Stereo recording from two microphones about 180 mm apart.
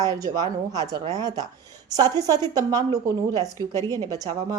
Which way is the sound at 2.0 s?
20° right (ahead or behind).